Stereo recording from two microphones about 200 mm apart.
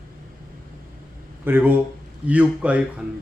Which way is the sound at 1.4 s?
10° right (ahead or behind).